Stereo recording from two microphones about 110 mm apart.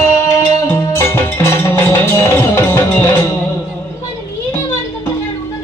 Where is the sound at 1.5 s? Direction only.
20° left (ahead or behind).